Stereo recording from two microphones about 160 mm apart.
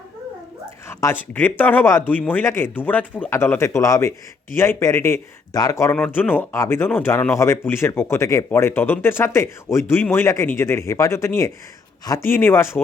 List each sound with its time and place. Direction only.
0.9 s speech: 15° left (ahead or behind)